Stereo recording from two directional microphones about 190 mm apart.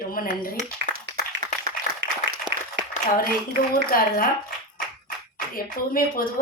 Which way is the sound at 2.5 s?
60° right (ahead or behind).